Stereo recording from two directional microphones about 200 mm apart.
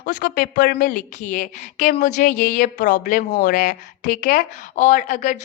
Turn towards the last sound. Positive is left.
turn(degrees=40)  # may be behind; listen again after turning